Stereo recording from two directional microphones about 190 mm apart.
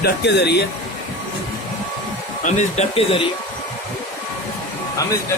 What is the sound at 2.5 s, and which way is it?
Speech, 35° left (ahead or behind).